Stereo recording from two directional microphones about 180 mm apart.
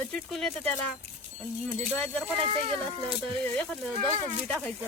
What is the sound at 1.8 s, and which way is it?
Speech, 5° left (ahead or behind).